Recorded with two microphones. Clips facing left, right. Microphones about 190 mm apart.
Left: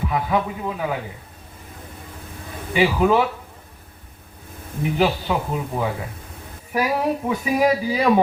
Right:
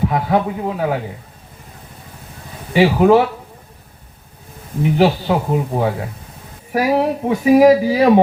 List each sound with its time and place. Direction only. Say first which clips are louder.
0.0 s speech: right 5 dB; 40° right (ahead or behind)
2.7 s speech: right 6 dB; 40° right (ahead or behind)
4.9 s speech: right 5 dB; 40° right (ahead or behind)